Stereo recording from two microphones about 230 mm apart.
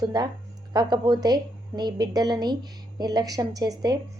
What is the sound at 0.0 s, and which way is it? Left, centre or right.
A woman's voice, centre.